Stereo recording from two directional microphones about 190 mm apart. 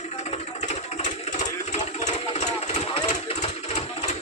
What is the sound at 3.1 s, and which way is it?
Sewing machine, 35° left (ahead or behind).